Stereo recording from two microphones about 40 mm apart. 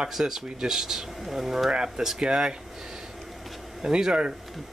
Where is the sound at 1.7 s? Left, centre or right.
Centre.